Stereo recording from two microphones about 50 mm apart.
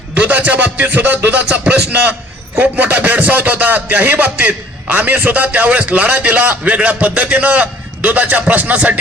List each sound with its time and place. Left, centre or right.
0.2 s speech: right